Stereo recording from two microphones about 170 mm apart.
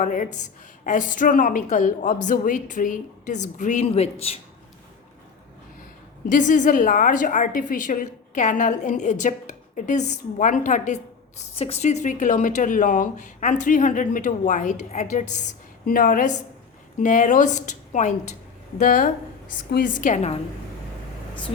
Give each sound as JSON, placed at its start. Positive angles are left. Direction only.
{"t": 0.0, "sound": "speech", "side_deg": 50}
{"t": 6.2, "sound": "speech", "side_deg": 50}